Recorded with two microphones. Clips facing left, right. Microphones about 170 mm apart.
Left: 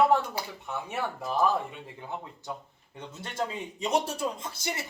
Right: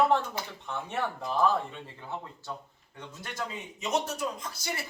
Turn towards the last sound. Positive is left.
turn(degrees=25)  # may be behind; listen again after turning